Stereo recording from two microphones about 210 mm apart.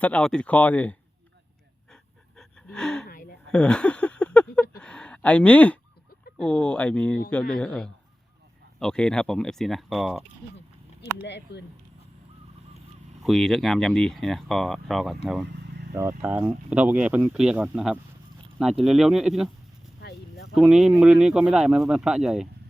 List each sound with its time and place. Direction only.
0.0 s speech: 5° left (ahead or behind)
1.9 s gasp: centre (ahead or behind)
3.1 s gasp: 45° left (ahead or behind)
3.5 s a sound: 5° left (ahead or behind)
6.4 s speech: 5° left (ahead or behind)
11.3 s speech: 55° left (ahead or behind)
13.2 s speech: centre (ahead or behind)
20.0 s a sound: 55° left (ahead or behind)
20.6 s speech: 5° right (ahead or behind)